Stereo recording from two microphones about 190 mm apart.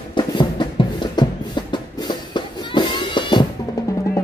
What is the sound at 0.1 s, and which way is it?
Music, 25° left (ahead or behind).